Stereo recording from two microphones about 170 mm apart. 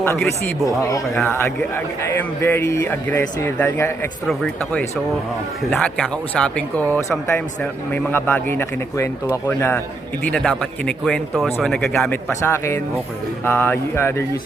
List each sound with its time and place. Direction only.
0.4 s a man's voice: 15° left (ahead or behind)
12.5 s speech: 15° left (ahead or behind)